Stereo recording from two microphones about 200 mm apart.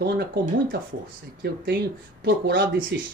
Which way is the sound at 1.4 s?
55° right (ahead or behind).